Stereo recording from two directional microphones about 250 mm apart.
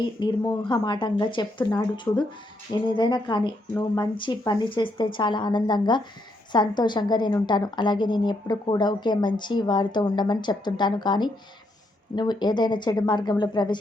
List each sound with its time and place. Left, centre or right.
0.0 s a woman's voice: centre